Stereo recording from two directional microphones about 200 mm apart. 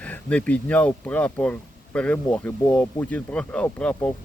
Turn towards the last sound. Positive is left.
turn(degrees=5)  # may be behind; listen again after turning